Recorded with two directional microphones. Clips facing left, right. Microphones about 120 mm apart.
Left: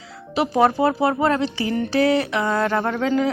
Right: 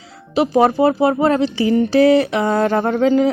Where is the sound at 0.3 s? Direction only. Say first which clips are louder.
Right 4 dB; 20° right (ahead or behind).